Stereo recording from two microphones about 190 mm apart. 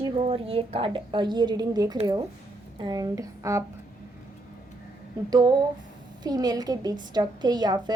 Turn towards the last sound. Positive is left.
turn(degrees=-20)  # may be behind; listen again after turning